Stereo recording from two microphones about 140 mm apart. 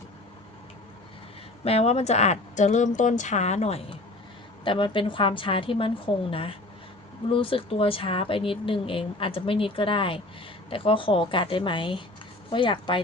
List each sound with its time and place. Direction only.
1.6 s speech: 45° left (ahead or behind)
4.6 s speech: 35° left (ahead or behind)